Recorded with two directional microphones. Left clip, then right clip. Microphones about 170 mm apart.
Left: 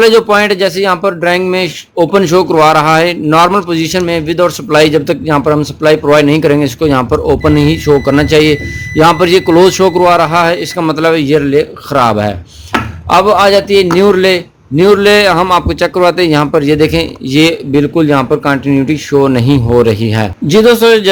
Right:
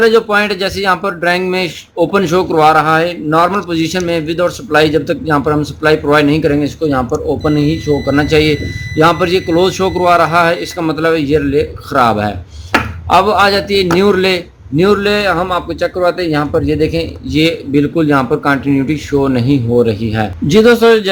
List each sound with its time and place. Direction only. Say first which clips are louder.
0.3 s a man's voice: left 4 dB; 35° left (ahead or behind)
3.5 s a man's voice: left 4 dB; 35° left (ahead or behind)
20.5 s a man's voice: left 2 dB; 30° left (ahead or behind)